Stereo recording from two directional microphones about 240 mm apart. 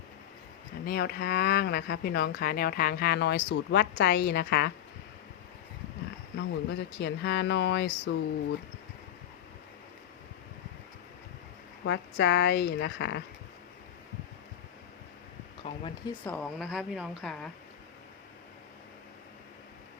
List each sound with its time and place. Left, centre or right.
0.9 s speech: left
6.3 s speech: left
11.9 s speech: left
15.6 s speech: left
16.3 s a woman's voice: centre